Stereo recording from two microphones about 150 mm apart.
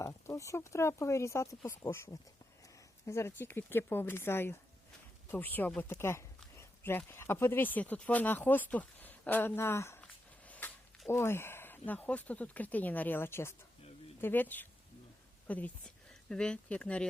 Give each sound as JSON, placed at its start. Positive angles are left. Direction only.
{"t": 0.0, "sound": "speech", "side_deg": 20}
{"t": 11.1, "sound": "speech", "side_deg": 15}